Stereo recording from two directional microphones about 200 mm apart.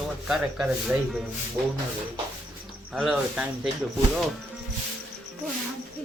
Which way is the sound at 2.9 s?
Centre (ahead or behind).